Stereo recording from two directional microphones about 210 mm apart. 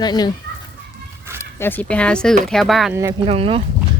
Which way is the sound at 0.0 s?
20° left (ahead or behind).